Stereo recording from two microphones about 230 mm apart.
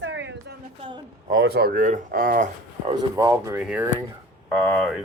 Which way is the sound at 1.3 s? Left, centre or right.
Right.